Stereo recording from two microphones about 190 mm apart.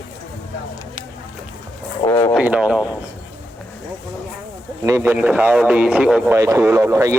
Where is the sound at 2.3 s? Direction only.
5° right (ahead or behind).